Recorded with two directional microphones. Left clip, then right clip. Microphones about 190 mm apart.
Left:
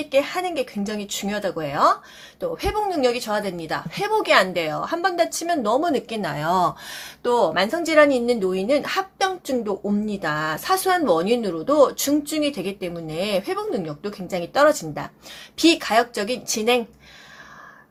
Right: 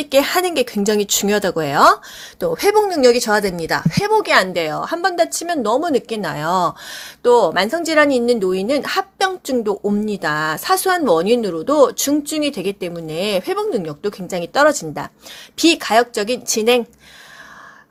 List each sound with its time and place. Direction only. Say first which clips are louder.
0.0 s a woman's voice: right 6 dB; 50° right (ahead or behind)